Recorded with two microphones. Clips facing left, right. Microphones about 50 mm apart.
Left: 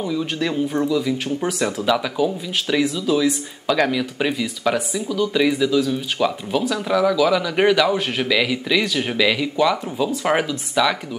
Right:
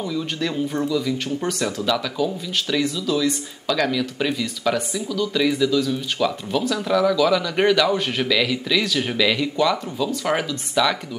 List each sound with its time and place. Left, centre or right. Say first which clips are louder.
0.0 s speech: left 2 dB; centre
9.9 s speech: left 3 dB; centre
10.5 s speech: left 1 dB; centre